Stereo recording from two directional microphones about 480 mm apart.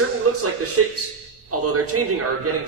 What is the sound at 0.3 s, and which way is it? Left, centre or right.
A man's voice, right.